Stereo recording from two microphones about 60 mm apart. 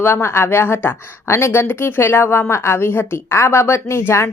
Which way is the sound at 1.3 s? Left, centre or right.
Left.